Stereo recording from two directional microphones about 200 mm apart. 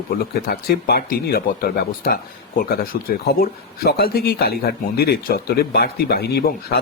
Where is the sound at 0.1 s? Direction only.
45° left (ahead or behind).